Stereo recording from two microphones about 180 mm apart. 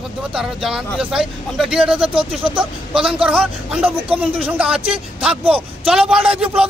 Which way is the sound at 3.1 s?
5° right (ahead or behind).